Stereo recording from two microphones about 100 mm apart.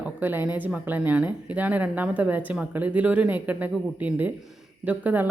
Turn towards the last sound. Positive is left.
turn(degrees=-15)  # may be behind; listen again after turning